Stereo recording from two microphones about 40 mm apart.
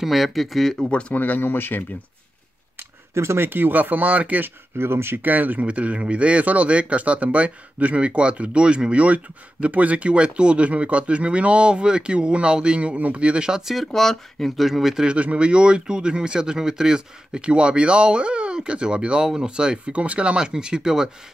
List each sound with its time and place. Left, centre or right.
0.0 s speech: centre
0.8 s speech: left
1.1 s speech: left
1.4 s speech: left
3.3 s speech: right
4.7 s speech: right
5.2 s speech: right
5.7 s speech: right
13.5 s speech: centre
13.7 s speech: centre
14.7 s speech: centre
15.1 s speech: right